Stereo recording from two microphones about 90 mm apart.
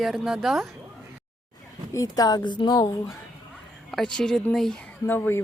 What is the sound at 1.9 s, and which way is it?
Speech, 40° left (ahead or behind).